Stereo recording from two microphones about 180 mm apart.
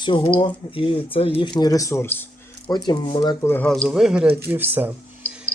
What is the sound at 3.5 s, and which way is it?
Speech, 10° left (ahead or behind).